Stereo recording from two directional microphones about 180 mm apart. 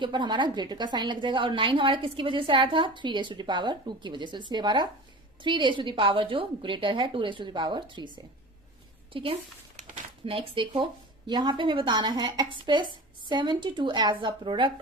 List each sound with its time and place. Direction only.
0.0 s a woman's voice: 25° right (ahead or behind)